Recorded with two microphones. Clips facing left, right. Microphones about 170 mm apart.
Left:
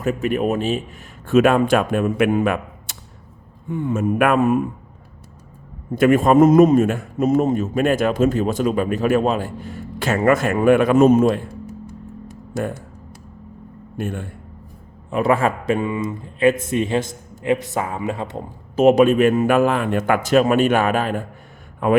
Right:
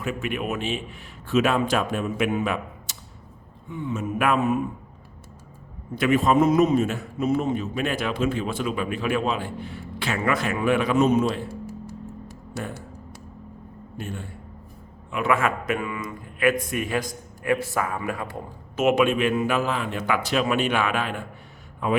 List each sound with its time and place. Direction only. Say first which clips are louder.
0.0 s a man's voice: left 8 dB; 40° left (ahead or behind)
6.0 s a man's voice: left 7 dB; 50° left (ahead or behind)
14.0 s a man's voice: left 8 dB; 55° left (ahead or behind)
15.1 s a man's voice: left 5 dB; 35° left (ahead or behind)
18.9 s a man's voice: left 7 dB; 40° left (ahead or behind)